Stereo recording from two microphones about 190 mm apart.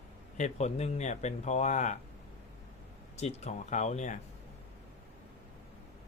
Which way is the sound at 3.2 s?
35° left (ahead or behind).